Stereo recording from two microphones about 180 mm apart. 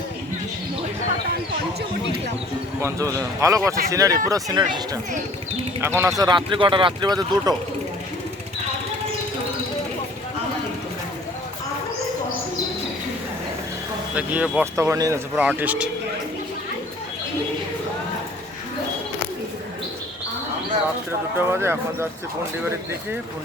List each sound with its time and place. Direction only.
2.8 s speech: 15° right (ahead or behind)
6.1 s speech: 25° right (ahead or behind)
14.2 s speech: 10° right (ahead or behind)
21.3 s speech: 15° right (ahead or behind)